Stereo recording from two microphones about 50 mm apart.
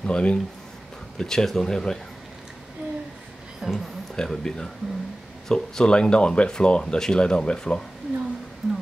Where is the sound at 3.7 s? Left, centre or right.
Centre.